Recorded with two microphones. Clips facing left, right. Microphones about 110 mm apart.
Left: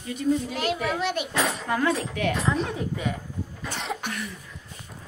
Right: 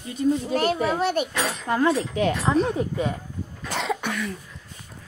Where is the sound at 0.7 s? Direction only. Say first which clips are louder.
Right 4 dB; 30° right (ahead or behind).